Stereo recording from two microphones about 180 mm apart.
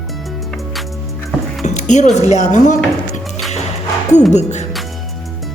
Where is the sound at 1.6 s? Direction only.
40° left (ahead or behind).